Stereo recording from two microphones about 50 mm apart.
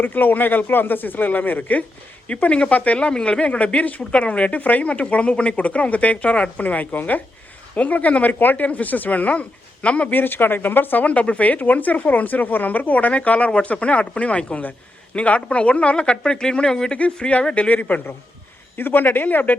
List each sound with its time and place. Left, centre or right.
0.0 s speech: left
2.2 s speech: left
3.1 s speech: centre
10.1 s speech: left
11.0 s speech: left
17.0 s speech: left
18.8 s speech: left